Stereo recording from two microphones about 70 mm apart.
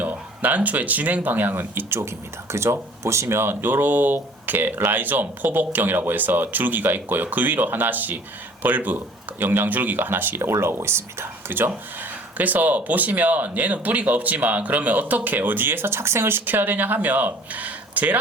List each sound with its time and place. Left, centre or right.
0.0 s speech: right
1.9 s speech: right